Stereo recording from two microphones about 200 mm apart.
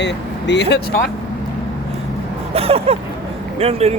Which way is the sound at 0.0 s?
60° left (ahead or behind).